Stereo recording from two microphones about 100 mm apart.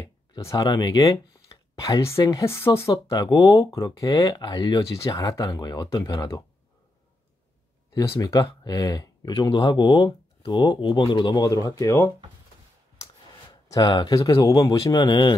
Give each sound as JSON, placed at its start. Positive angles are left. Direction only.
{"t": 0.4, "sound": "speech", "side_deg": 30}
{"t": 0.7, "sound": "speech", "side_deg": 45}
{"t": 1.3, "sound": "speech", "side_deg": 35}
{"t": 2.9, "sound": "speech", "side_deg": 40}
{"t": 7.9, "sound": "speech", "side_deg": 35}
{"t": 11.4, "sound": "speech", "side_deg": 35}
{"t": 13.5, "sound": "speech", "side_deg": 40}